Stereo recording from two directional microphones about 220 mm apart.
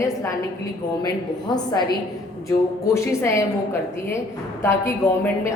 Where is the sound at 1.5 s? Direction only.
20° left (ahead or behind).